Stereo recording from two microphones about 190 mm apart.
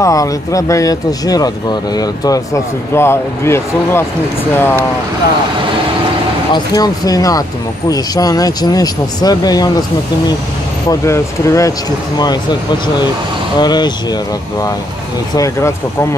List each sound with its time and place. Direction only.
0.0 s speech: 20° left (ahead or behind)
6.5 s speech: 20° left (ahead or behind)
13.6 s speech: 20° left (ahead or behind)